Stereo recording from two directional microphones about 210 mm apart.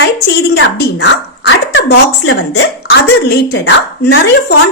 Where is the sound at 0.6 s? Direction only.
55° left (ahead or behind).